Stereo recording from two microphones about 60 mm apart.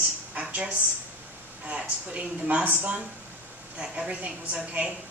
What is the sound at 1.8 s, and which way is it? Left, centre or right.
A woman's voice, right.